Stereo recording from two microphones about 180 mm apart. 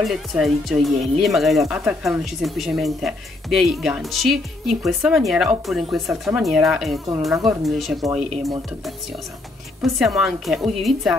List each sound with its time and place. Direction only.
0.0 s speech: centre (ahead or behind)
9.8 s speech: centre (ahead or behind)